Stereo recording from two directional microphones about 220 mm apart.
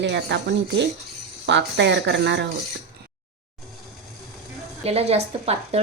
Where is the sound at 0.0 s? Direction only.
50° right (ahead or behind).